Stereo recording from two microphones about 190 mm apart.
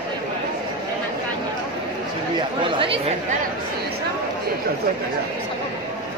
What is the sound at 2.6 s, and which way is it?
Speech, 25° right (ahead or behind).